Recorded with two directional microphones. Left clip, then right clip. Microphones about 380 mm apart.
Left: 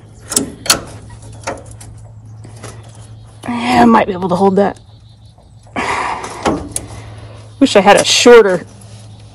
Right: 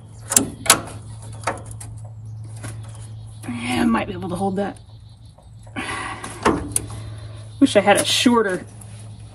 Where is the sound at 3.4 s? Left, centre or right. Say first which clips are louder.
Left 12 dB; centre.